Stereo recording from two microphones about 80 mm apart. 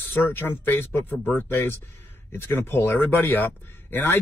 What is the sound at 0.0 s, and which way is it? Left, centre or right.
Speech, left.